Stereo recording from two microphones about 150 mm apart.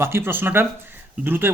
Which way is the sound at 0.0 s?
15° right (ahead or behind).